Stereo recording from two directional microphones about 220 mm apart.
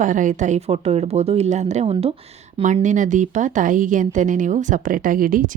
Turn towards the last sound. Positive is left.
turn(degrees=-40)  # may be behind; listen again after turning